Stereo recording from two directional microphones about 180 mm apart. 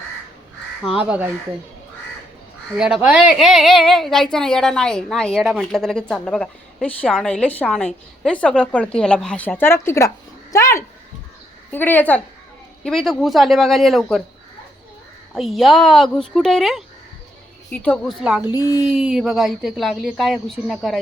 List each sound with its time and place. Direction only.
0.9 s speech: 5° right (ahead or behind)
2.7 s a woman's voice: 5° right (ahead or behind)
15.4 s speech: centre (ahead or behind)
18.4 s a child's voice: 20° left (ahead or behind)
18.9 s speech: 5° right (ahead or behind)